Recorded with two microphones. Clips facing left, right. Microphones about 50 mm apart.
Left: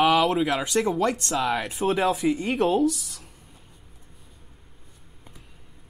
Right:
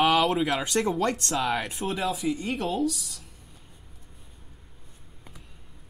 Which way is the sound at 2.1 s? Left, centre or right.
Left.